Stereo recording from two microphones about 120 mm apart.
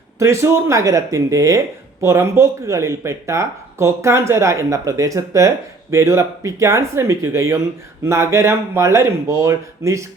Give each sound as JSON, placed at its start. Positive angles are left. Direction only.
{"t": 0.2, "sound": "speech", "side_deg": -25}